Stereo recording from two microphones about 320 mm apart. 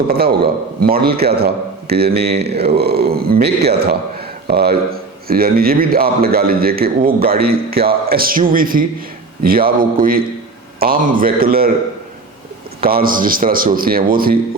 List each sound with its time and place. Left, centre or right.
0.1 s speech: right
12.8 s speech: right